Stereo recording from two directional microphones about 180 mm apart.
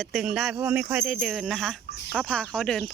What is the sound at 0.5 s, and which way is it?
Speech, 10° right (ahead or behind).